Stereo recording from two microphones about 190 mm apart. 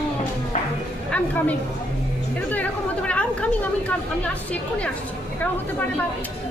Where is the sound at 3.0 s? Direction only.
5° left (ahead or behind).